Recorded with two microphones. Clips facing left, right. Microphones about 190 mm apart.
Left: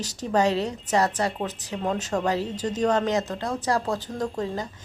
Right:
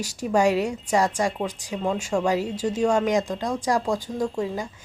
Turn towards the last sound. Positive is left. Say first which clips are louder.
# right 2 dB
turn(degrees=-10)  # may be behind; listen again after turning